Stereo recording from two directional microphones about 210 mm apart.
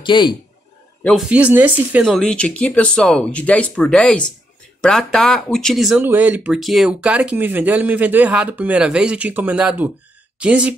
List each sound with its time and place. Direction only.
0.0 s speech: 20° left (ahead or behind)
1.0 s speech: 5° right (ahead or behind)